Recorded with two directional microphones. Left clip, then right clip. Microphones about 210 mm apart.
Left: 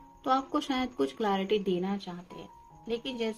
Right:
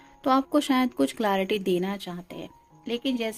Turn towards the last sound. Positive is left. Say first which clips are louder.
# right 4 dB
turn(degrees=-50)  # may be behind; listen again after turning